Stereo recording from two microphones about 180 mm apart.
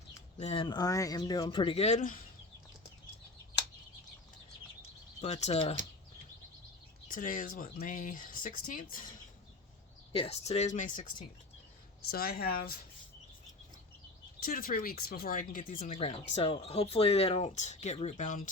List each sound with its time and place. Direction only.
0.3 s speech: 35° left (ahead or behind)
5.2 s speech: 35° left (ahead or behind)
7.1 s speech: 45° left (ahead or behind)
10.1 s speech: 30° left (ahead or behind)
12.0 s speech: 55° left (ahead or behind)
14.3 s speech: 55° left (ahead or behind)
16.0 s speech: 35° left (ahead or behind)